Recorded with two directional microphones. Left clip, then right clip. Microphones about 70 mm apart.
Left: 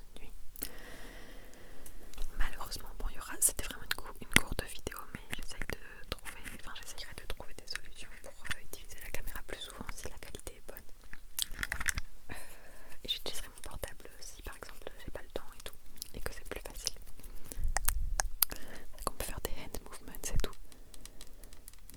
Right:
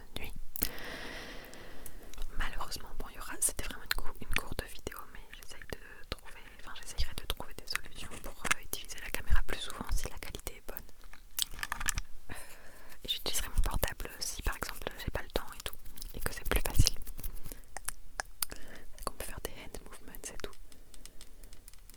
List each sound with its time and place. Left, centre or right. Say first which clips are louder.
0.1 s whispering: right 12 dB; right
0.6 s a sound: right 8 dB; right
1.5 s whispering: right 5 dB; right; by 6.9 s centre
7.1 s whispering: right 5 dB; right
11.4 s computer keyboard: right 2 dB; centre
12.3 s wheeze: even; centre
13.0 s whispering: right 1 dB; centre
13.4 s whispering: right 8 dB; right
16.0 s whispering: left 3 dB; centre
16.4 s whispering: right 9 dB; right
17.7 s whispering: left 5 dB; centre